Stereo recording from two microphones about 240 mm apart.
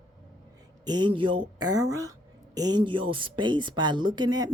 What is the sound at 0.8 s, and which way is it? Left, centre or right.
Speech, centre.